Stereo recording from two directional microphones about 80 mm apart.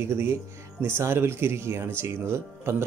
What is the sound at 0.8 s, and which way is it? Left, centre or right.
Speech, right.